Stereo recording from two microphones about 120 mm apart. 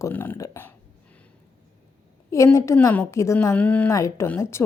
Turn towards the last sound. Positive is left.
turn(degrees=20)  # may be behind; listen again after turning